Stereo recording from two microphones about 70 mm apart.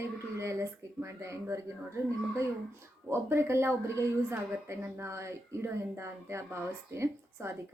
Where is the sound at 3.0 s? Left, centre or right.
Right.